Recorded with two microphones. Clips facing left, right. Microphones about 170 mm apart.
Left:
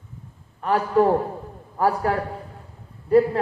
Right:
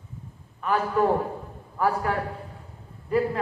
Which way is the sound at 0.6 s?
35° left (ahead or behind).